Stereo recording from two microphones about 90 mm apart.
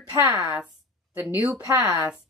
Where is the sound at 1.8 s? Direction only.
25° right (ahead or behind).